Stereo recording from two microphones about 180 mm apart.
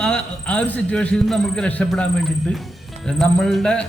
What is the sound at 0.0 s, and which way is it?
A man's voice, 5° left (ahead or behind).